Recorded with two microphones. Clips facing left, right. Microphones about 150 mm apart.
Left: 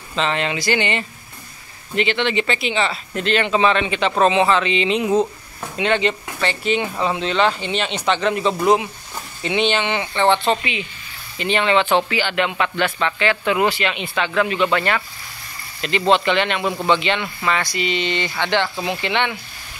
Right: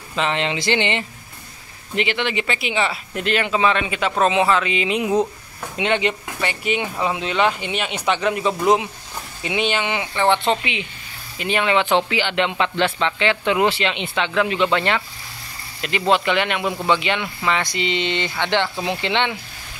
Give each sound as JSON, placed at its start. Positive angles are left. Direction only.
{"t": 0.1, "sound": "speech", "side_deg": -15}
{"t": 15.8, "sound": "speech", "side_deg": -10}